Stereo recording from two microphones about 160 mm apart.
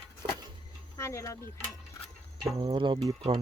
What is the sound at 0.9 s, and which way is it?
Speech, 20° left (ahead or behind).